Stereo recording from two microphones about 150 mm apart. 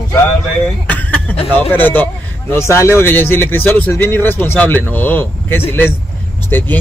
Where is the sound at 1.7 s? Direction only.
10° left (ahead or behind).